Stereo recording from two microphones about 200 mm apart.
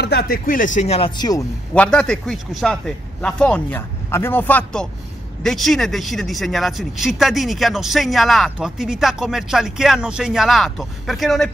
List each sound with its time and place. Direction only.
0.0 s speech: 55° left (ahead or behind)
0.7 s speech: 30° left (ahead or behind)
1.8 s speech: 5° left (ahead or behind)